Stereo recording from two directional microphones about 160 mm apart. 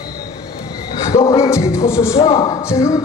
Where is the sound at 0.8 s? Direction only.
35° left (ahead or behind).